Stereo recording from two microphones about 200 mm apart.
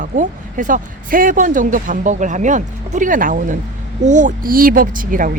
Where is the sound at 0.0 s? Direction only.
40° right (ahead or behind).